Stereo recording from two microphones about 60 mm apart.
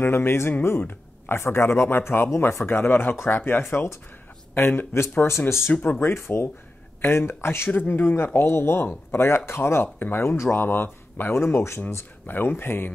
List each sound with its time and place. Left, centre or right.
0.0 s speech: left
5.7 s speech: left
5.9 s speech: left